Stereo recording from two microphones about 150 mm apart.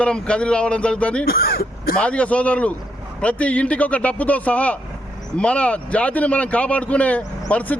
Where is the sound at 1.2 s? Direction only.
85° left.